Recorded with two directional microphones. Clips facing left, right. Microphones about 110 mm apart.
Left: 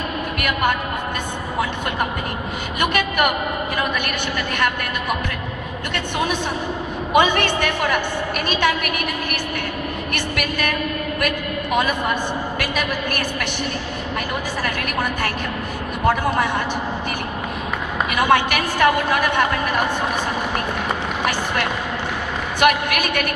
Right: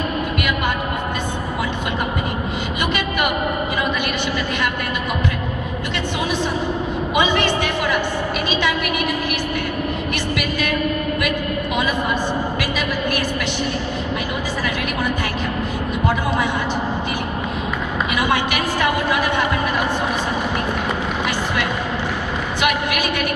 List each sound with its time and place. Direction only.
2.8 s a sound: 50° left (ahead or behind)
7.2 s a woman's voice: 50° left (ahead or behind)
18.1 s a woman's voice: 55° left (ahead or behind)
22.6 s a woman's voice: 50° left (ahead or behind)